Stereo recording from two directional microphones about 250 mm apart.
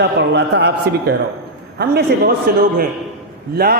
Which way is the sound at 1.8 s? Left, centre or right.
Right.